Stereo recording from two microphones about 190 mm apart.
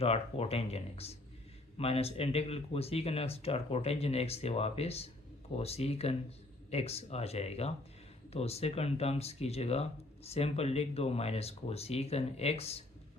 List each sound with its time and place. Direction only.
0.0 s speech: 30° left (ahead or behind)